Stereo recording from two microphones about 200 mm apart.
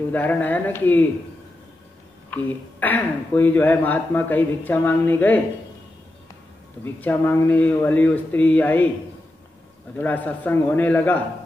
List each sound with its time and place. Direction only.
0.1 s speech: 10° left (ahead or behind)
2.3 s speech: 10° left (ahead or behind)
6.8 s speech: 10° left (ahead or behind)
9.9 s speech: 10° left (ahead or behind)